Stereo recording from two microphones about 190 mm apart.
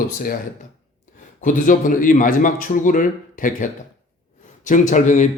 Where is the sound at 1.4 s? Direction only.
45° left (ahead or behind).